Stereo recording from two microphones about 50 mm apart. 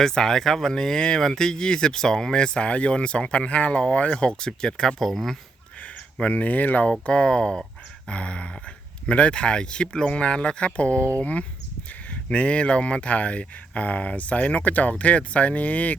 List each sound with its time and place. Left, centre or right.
0.0 s speech: centre
4.9 s speech: centre
5.8 s speech: left